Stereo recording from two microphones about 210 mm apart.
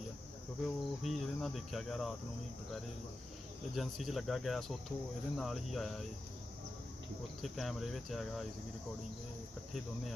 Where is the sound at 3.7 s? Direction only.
Centre (ahead or behind).